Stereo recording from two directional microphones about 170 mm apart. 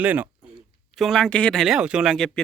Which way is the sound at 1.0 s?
Centre (ahead or behind).